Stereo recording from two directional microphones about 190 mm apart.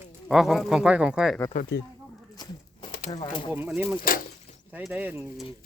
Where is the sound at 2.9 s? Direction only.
50° left (ahead or behind).